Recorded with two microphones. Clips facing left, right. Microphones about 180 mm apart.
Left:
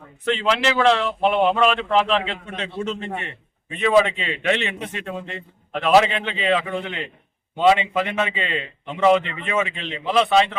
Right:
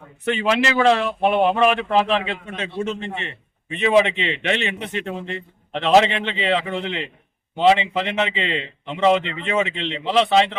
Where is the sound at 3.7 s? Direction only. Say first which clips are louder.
Even; 20° right (ahead or behind).